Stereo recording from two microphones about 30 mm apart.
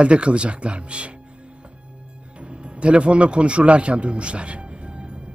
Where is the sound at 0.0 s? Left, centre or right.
Right.